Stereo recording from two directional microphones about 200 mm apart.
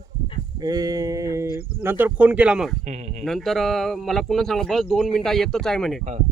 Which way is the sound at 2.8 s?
35° right (ahead or behind).